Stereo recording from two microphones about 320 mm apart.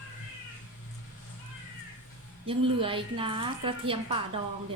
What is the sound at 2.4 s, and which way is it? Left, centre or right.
A woman's voice, centre.